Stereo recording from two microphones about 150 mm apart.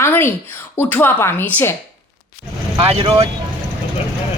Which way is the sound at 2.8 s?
40° right (ahead or behind).